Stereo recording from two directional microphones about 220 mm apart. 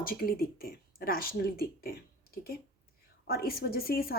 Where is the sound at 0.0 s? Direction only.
40° left (ahead or behind).